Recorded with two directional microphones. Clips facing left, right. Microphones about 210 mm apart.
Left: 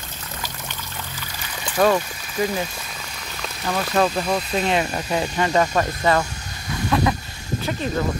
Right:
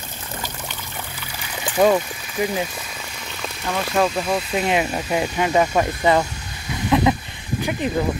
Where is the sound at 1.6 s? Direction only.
15° right (ahead or behind).